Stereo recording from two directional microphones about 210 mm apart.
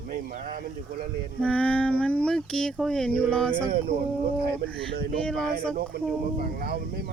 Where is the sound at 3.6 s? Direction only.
45° right (ahead or behind).